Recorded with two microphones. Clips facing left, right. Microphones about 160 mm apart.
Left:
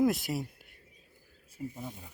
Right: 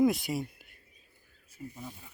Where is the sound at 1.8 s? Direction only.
20° left (ahead or behind).